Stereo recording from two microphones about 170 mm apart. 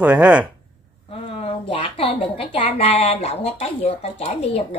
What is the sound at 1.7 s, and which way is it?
A woman's voice, 30° left (ahead or behind).